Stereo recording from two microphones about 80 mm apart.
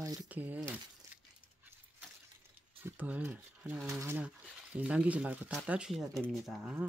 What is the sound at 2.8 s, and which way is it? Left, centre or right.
Speech, right.